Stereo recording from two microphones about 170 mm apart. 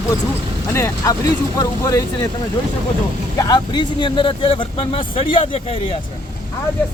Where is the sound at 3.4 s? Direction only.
25° left (ahead or behind).